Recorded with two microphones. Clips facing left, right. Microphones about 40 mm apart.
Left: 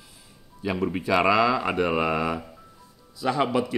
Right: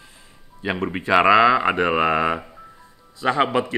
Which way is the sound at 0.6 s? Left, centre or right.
Right.